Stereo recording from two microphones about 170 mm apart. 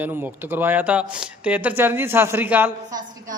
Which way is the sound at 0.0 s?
10° right (ahead or behind).